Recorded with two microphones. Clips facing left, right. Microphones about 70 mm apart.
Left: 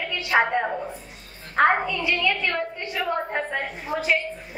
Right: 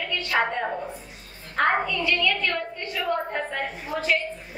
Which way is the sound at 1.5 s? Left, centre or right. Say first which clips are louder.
Left 3 dB; centre.